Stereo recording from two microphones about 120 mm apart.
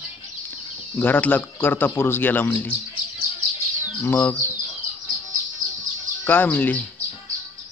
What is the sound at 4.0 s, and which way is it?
Speech, 15° left (ahead or behind).